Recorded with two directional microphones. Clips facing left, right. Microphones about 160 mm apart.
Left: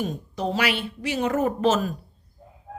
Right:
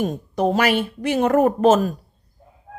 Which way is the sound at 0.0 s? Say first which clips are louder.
Right 7 dB; 50° right (ahead or behind).